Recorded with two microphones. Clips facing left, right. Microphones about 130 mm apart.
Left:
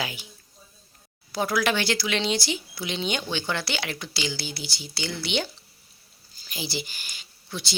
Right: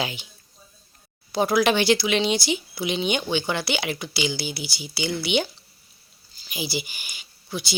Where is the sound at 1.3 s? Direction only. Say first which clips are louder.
Right 5 dB; 20° right (ahead or behind).